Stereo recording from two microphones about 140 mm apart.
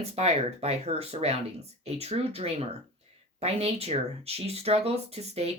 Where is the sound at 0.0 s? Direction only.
50° right (ahead or behind).